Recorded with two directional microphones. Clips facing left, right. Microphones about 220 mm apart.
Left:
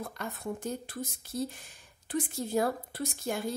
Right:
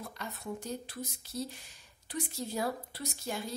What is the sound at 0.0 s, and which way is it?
A woman's voice, 50° left (ahead or behind).